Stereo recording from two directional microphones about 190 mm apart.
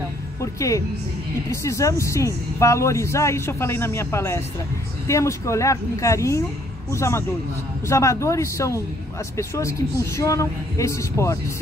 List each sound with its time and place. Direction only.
0.4 s speech: 15° left (ahead or behind)